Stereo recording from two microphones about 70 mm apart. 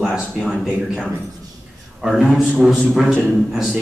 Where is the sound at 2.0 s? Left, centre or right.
Centre.